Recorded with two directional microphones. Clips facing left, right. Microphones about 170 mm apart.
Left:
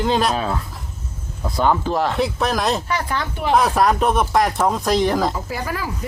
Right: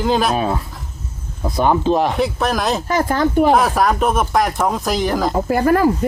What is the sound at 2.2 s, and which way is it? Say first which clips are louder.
Speech: right 2 dB; centre (ahead or behind).